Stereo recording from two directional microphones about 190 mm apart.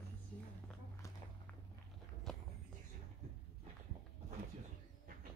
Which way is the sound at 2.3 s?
Centre (ahead or behind).